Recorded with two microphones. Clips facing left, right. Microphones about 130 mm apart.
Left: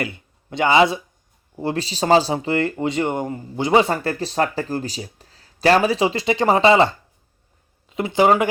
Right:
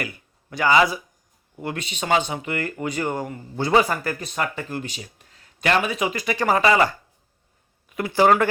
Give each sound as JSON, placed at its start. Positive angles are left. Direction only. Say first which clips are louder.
{"t": 0.0, "sound": "speech", "louder": "left 5 dB", "side_deg": 25}